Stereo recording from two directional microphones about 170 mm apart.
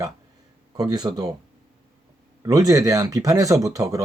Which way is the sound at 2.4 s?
20° right (ahead or behind).